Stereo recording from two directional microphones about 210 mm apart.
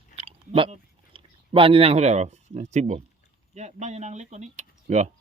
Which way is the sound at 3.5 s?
35° right (ahead or behind).